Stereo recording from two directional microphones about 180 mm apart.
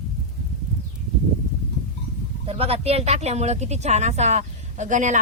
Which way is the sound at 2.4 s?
35° right (ahead or behind).